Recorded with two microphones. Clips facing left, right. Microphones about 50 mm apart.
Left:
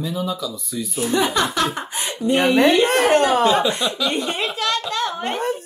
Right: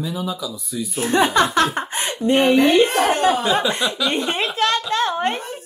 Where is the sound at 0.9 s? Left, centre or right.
Right.